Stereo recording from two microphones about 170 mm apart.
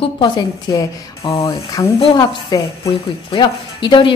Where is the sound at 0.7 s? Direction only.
20° left (ahead or behind).